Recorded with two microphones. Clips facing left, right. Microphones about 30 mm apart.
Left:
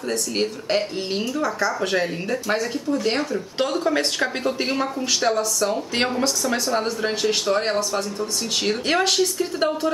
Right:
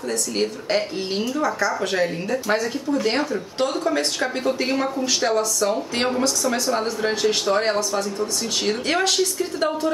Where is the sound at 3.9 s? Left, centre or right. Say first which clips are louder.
Left 1 dB; centre.